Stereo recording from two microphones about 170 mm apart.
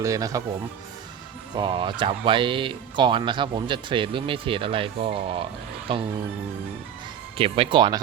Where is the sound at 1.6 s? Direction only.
30° right (ahead or behind).